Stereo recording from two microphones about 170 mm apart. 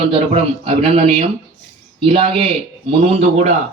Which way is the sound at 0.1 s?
35° right (ahead or behind).